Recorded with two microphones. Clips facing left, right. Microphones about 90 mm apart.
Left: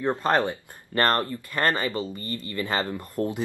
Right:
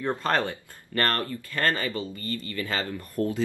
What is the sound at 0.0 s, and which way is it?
Speech, 20° left (ahead or behind).